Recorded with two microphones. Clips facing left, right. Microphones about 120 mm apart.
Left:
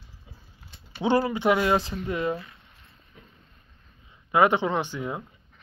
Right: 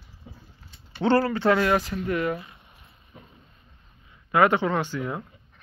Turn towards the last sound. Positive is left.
turn(degrees=20)  # may be behind; listen again after turning